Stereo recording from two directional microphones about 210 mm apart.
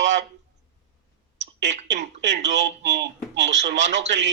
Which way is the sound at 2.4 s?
55° right (ahead or behind).